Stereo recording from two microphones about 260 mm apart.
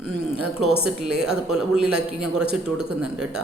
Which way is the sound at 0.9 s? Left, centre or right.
Centre.